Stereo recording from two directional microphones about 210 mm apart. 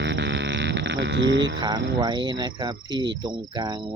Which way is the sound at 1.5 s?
20° right (ahead or behind).